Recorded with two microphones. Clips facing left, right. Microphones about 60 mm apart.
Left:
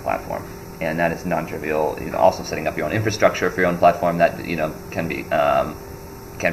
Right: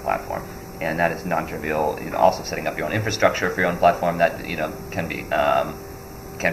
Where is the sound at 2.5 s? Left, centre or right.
Left.